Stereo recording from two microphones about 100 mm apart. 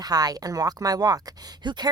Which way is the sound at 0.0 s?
40° right (ahead or behind).